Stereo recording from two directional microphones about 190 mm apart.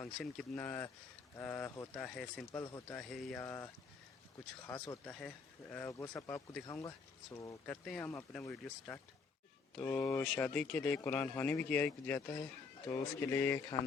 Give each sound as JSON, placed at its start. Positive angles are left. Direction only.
{"t": 0.0, "sound": "speech", "side_deg": 5}